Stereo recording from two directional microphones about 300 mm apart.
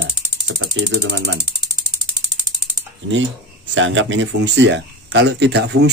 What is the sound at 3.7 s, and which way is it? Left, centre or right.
Speech, right.